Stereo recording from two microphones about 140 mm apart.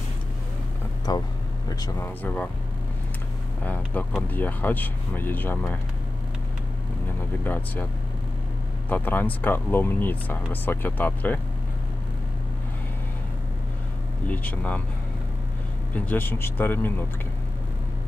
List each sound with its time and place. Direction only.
1.1 s speech: 30° left (ahead or behind)
2.0 s speech: 15° left (ahead or behind)
4.3 s speech: 15° left (ahead or behind)
7.4 s speech: 15° left (ahead or behind)
8.8 s speech: 15° left (ahead or behind)
16.1 s speech: 15° left (ahead or behind)